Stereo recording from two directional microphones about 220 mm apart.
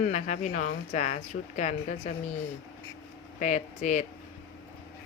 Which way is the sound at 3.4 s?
35° left (ahead or behind).